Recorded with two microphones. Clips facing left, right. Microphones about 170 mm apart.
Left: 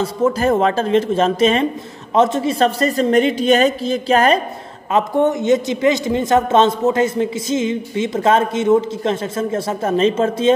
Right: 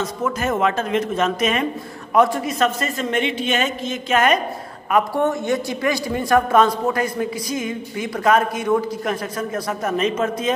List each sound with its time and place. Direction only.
0.0 s a man's voice: 30° left (ahead or behind)
4.9 s a man's voice: 20° left (ahead or behind)